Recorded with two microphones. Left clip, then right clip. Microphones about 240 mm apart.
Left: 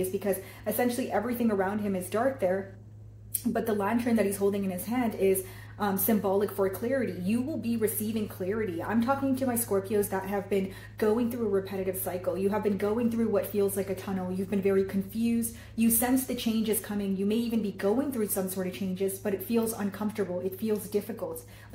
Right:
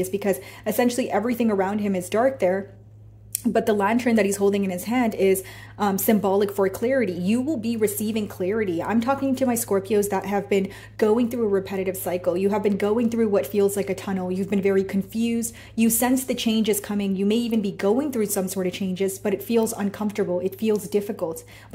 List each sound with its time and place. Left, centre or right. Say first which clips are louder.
0.2 s speech: right 6 dB; right